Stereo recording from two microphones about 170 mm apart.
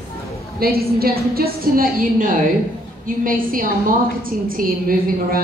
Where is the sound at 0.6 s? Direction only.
65° right (ahead or behind).